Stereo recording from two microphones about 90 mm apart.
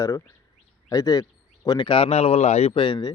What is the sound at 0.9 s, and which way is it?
Speech, 40° left (ahead or behind).